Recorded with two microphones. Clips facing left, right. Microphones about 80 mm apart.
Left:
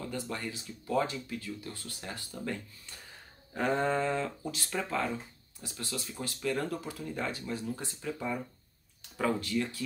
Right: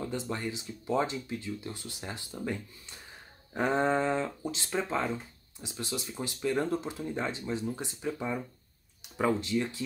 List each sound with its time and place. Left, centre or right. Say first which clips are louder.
0.0 s speech: right 3 dB; right